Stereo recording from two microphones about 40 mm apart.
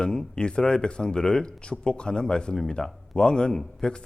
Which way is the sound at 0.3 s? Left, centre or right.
Left.